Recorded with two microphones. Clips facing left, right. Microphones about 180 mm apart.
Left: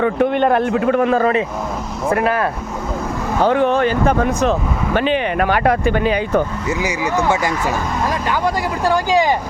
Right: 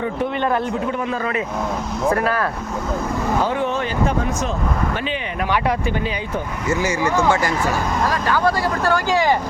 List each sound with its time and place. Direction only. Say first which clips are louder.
0.0 s speech: left 6 dB; 60° left (ahead or behind)
2.1 s speech: left 7 dB; 20° left (ahead or behind)
3.4 s speech: left 7 dB; 65° left (ahead or behind)
6.7 s speech: even; 15° left (ahead or behind)